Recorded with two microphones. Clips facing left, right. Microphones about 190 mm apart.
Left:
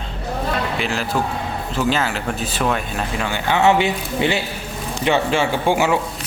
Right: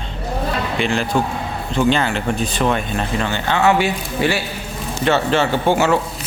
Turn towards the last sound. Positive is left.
turn(degrees=10)  # may be behind; listen again after turning